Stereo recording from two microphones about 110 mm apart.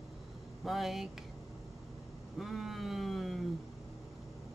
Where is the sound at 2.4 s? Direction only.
Centre (ahead or behind).